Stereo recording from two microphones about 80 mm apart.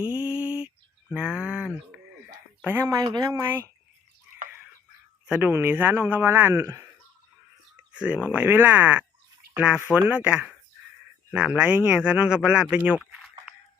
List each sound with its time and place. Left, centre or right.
0.0 s mantra: centre
1.1 s a sound: centre
2.6 s speech: right
2.8 s speech: right
5.4 s speech: right
6.6 s speech: right
7.9 s speech: centre